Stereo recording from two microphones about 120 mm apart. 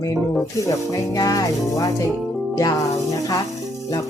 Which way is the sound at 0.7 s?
25° left (ahead or behind).